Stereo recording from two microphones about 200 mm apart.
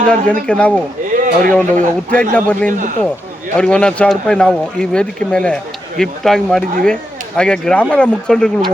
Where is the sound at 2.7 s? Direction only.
40° right (ahead or behind).